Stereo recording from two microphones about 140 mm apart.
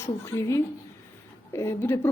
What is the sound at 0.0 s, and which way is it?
A woman's voice, 20° left (ahead or behind).